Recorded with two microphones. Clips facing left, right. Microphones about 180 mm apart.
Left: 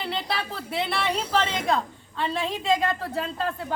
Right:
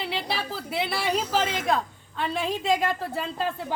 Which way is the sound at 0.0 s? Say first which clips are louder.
Even; 5° right (ahead or behind).